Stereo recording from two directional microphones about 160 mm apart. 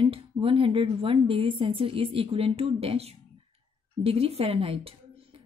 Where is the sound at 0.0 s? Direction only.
35° right (ahead or behind).